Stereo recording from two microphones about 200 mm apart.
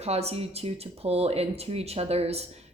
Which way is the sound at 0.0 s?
30° right (ahead or behind).